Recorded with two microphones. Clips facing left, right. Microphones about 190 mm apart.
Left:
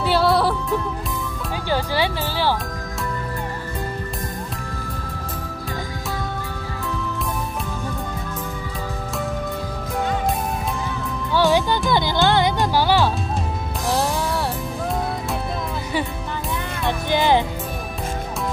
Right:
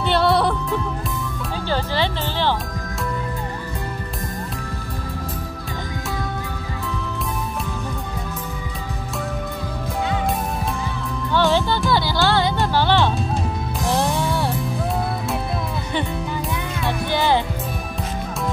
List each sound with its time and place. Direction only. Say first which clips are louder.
0.0 s music: even; 5° left (ahead or behind)
1.7 s music: left 1 dB; 10° left (ahead or behind)
11.3 s music: left 1 dB; 15° left (ahead or behind)
16.8 s music: left 1 dB; 15° left (ahead or behind)